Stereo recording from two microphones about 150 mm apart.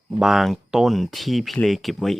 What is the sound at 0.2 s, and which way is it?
Speech, centre (ahead or behind).